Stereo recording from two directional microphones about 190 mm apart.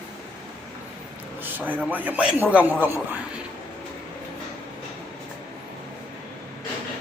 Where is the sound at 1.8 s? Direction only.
10° right (ahead or behind).